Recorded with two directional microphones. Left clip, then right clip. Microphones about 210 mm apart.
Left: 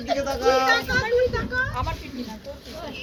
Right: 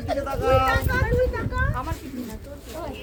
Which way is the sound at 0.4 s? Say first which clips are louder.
Left 1 dB; 45° left (ahead or behind).